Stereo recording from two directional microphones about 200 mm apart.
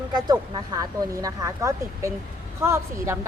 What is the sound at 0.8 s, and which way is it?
A woman's voice, 15° right (ahead or behind).